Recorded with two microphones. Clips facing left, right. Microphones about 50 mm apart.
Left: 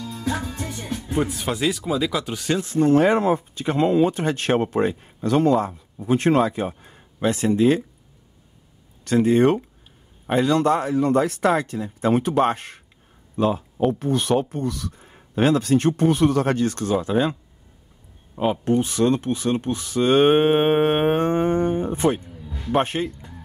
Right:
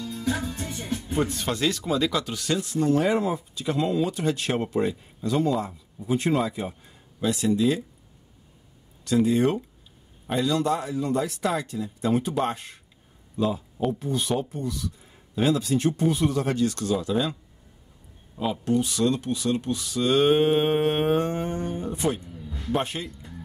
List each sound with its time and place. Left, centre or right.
0.3 s music: centre
1.1 s speech: centre
2.2 s speech: left
9.0 s speech: left